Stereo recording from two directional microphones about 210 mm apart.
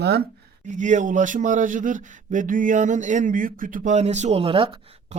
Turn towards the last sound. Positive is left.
turn(degrees=-25)  # may be behind; listen again after turning